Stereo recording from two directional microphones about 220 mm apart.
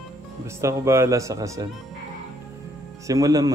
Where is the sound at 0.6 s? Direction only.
10° right (ahead or behind).